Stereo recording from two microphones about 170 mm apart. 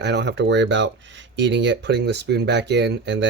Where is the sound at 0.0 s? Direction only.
85° right.